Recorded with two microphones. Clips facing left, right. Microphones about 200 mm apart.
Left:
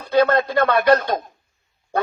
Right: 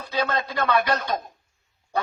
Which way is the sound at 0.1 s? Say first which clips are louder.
Left 10 dB; 55° left (ahead or behind).